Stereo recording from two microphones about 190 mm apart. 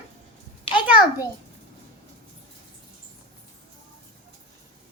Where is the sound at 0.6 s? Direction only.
25° left (ahead or behind).